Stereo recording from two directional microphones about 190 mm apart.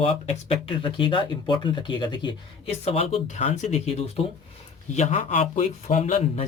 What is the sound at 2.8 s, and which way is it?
Speech, 35° left (ahead or behind).